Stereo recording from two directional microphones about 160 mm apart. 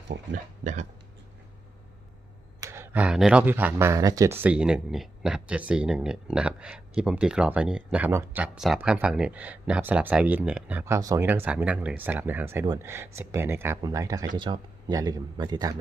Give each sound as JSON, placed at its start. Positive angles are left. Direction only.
{"t": 0.1, "sound": "speech", "side_deg": -80}
{"t": 0.6, "sound": "hiccup", "side_deg": -50}
{"t": 2.6, "sound": "speech", "side_deg": -15}